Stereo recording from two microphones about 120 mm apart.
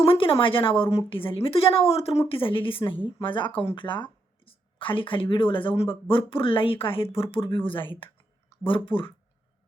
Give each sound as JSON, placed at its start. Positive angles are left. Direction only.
{"t": 0.0, "sound": "speech", "side_deg": 50}